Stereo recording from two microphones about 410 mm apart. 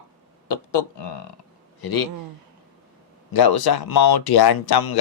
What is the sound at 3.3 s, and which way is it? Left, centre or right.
Speech, left.